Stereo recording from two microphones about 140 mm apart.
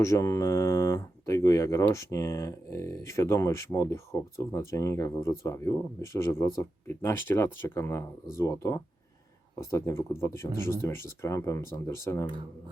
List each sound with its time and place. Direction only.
0.0 s speech: 20° left (ahead or behind)